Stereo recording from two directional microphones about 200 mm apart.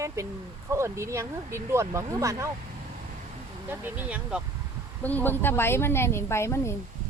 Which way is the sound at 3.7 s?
10° right (ahead or behind).